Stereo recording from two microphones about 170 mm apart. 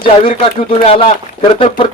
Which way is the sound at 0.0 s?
30° left (ahead or behind).